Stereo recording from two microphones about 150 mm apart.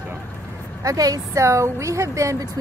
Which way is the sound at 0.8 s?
25° right (ahead or behind).